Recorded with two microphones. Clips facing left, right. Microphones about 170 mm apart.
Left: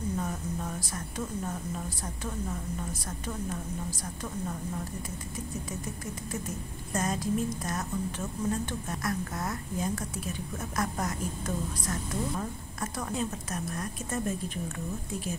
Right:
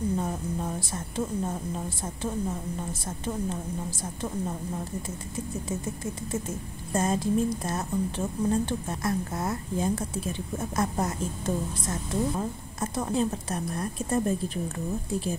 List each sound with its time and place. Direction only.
0.2 s speech: 25° right (ahead or behind)
6.9 s a woman's voice: 30° right (ahead or behind)